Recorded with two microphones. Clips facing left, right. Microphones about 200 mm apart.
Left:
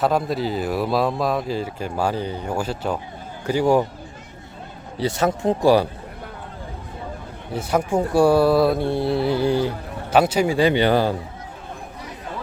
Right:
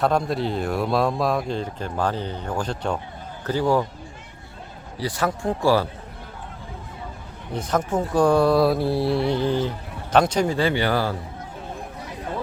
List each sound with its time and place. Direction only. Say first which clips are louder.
0.0 s speech: left 1 dB; 5° left (ahead or behind)
4.9 s speech: left 4 dB; 25° left (ahead or behind)
7.5 s speech: left 2 dB; 10° left (ahead or behind)